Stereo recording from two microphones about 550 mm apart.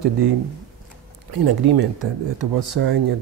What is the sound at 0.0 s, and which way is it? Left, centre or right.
Speech, right.